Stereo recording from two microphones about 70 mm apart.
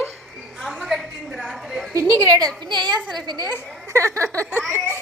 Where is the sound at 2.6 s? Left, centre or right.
Right.